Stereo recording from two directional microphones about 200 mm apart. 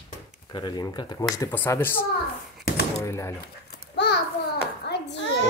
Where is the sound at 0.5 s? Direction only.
20° left (ahead or behind).